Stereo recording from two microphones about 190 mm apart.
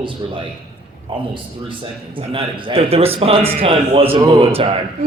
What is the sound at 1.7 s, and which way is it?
A man's voice, 25° right (ahead or behind).